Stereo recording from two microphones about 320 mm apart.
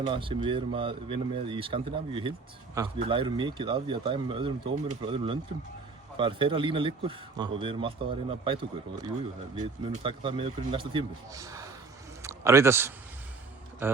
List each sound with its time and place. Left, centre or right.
0.0 s speech: centre